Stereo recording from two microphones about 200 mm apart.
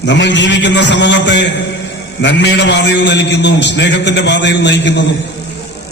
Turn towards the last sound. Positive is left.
turn(degrees=60)  # may be behind; listen again after turning